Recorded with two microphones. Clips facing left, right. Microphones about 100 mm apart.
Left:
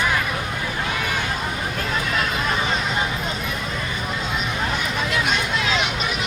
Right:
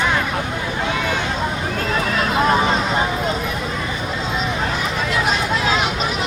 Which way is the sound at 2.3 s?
35° right (ahead or behind).